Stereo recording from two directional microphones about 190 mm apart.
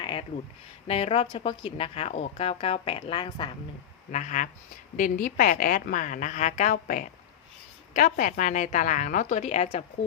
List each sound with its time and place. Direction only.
0.0 s a sound: 30° left (ahead or behind)
0.9 s a woman's voice: 30° left (ahead or behind)
4.1 s a woman's voice: 40° left (ahead or behind)